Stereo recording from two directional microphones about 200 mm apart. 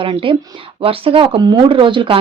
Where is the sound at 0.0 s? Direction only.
25° right (ahead or behind).